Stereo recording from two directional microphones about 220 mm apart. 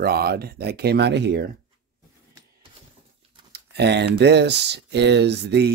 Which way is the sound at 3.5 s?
50° right (ahead or behind).